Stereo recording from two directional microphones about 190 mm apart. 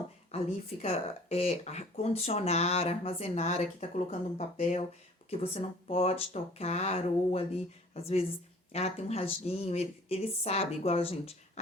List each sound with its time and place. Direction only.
0.3 s speech: 35° left (ahead or behind)